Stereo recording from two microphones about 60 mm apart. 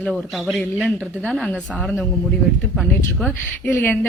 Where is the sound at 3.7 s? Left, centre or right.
Left.